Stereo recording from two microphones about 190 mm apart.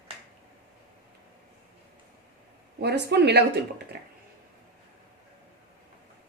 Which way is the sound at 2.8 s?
60° right (ahead or behind).